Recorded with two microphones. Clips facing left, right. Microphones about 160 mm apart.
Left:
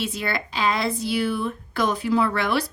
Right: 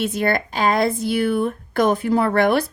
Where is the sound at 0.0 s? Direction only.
50° right (ahead or behind).